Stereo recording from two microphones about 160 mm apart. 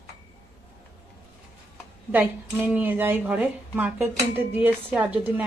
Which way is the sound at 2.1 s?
10° right (ahead or behind).